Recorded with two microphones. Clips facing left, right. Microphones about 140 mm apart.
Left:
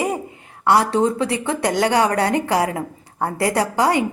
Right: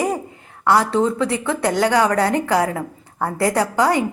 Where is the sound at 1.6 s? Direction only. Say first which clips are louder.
Right 1 dB; 30° right (ahead or behind).